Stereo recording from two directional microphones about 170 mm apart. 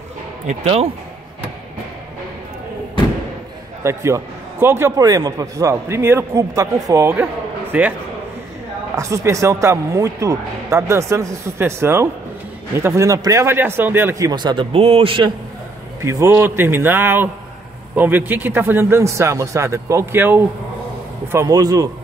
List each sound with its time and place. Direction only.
0.5 s speech: 40° right (ahead or behind)
3.8 s a man's voice: 15° right (ahead or behind)
8.9 s a man's voice: 20° right (ahead or behind)
16.0 s a man's voice: 15° right (ahead or behind)